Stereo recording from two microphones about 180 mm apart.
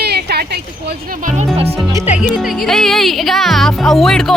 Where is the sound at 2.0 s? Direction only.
40° left (ahead or behind).